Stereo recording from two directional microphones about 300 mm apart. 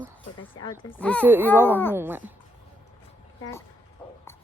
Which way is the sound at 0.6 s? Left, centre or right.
Centre.